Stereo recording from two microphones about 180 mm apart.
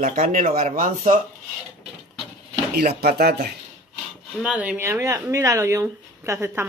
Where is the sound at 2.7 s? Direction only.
55° right (ahead or behind).